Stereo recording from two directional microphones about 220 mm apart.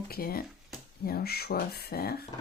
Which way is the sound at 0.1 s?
45° left (ahead or behind).